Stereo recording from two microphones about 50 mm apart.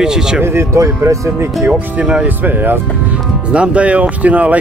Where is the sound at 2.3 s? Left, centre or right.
Right.